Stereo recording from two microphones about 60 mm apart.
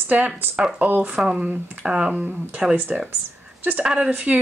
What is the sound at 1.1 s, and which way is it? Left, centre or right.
Speech, centre.